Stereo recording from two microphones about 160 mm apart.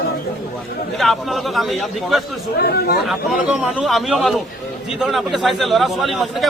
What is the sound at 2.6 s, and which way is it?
Speech, 75° left (ahead or behind).